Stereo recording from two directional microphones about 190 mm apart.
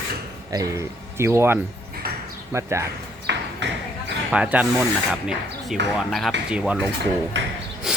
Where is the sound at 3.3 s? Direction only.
65° right (ahead or behind).